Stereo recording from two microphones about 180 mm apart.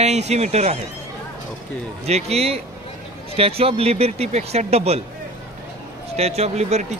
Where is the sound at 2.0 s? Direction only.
35° right (ahead or behind).